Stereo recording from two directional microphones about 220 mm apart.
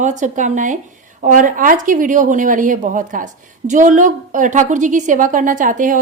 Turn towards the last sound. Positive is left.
turn(degrees=-40)  # may be behind; listen again after turning